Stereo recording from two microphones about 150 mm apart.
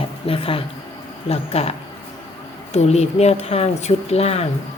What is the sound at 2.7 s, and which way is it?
Speech, 45° left (ahead or behind).